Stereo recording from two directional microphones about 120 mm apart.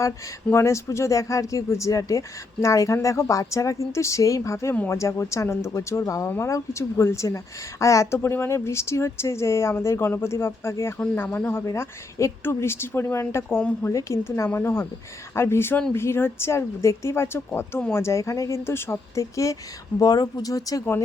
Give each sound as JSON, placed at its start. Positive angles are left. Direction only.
{"t": 0.5, "sound": "speech", "side_deg": 25}
{"t": 4.7, "sound": "speech", "side_deg": 15}
{"t": 13.6, "sound": "speech", "side_deg": 10}
{"t": 13.9, "sound": "speech", "side_deg": 25}